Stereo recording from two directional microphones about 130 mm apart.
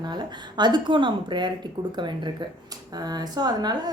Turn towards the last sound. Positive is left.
turn(degrees=-30)  # may be behind; listen again after turning